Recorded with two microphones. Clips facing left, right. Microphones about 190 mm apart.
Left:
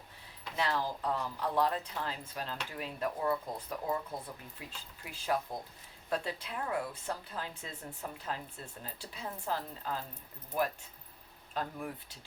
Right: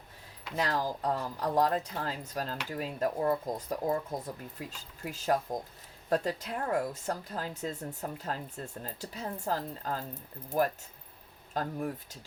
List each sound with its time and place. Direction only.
0.5 s speech: 40° right (ahead or behind)
11.5 s speech: 40° right (ahead or behind)